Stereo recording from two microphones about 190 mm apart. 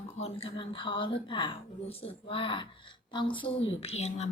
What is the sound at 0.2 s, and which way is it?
A woman's voice, 30° left (ahead or behind).